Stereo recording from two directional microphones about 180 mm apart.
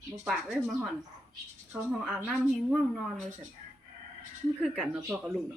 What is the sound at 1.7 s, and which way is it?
A woman's voice, 5° right (ahead or behind).